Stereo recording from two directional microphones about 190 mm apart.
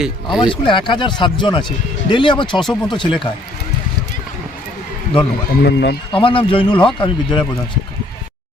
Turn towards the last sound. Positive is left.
turn(degrees=25)  # may be behind; listen again after turning